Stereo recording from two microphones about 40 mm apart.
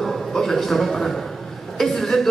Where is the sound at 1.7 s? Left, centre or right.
Centre.